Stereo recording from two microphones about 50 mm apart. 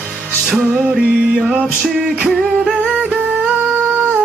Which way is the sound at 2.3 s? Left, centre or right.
Centre.